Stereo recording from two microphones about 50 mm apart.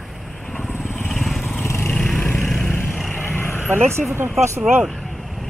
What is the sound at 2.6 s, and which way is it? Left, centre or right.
Vehicle, left.